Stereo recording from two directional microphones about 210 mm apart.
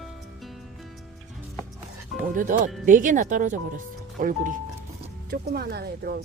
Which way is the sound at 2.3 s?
40° right (ahead or behind).